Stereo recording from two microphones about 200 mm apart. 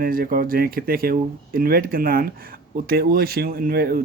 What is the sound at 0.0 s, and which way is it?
Speech, 45° right (ahead or behind).